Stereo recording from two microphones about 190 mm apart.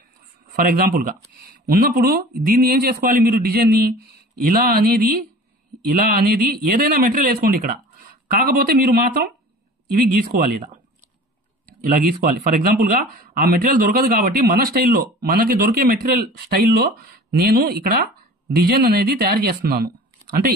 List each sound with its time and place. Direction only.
0.5 s speech: 50° right (ahead or behind)
9.9 s speech: 50° right (ahead or behind)